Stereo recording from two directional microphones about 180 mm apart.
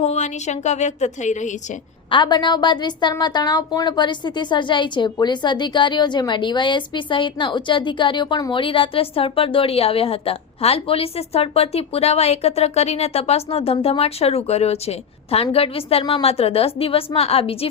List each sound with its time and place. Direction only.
0.0 s a woman's voice: 40° left (ahead or behind)
2.0 s a woman's voice: 25° left (ahead or behind)